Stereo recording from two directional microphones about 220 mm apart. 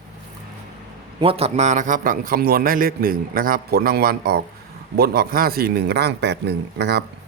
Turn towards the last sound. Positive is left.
turn(degrees=-50)  # may be behind; listen again after turning